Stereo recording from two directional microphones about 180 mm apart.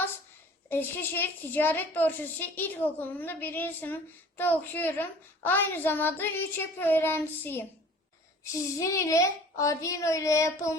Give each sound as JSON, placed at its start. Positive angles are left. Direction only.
{"t": 0.7, "sound": "a woman's voice", "side_deg": 10}
{"t": 8.8, "sound": "a woman's voice", "side_deg": 15}